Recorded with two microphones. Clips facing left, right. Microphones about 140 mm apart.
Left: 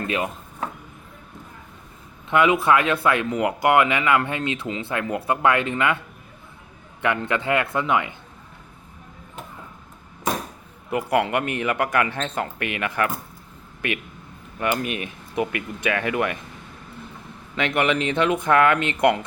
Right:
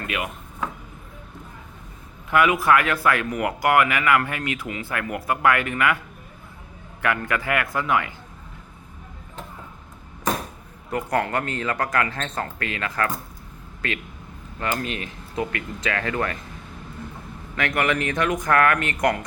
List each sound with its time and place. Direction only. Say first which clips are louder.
0.1 s speech: left 3 dB; 30° left (ahead or behind)
2.3 s speech: left 1 dB; 25° left (ahead or behind)
7.0 s speech: left 1 dB; 20° left (ahead or behind)
10.8 s speech: left 2 dB; 15° left (ahead or behind)
14.6 s speech: left 3 dB; 15° left (ahead or behind)
17.5 s speech: left 2 dB; 20° left (ahead or behind)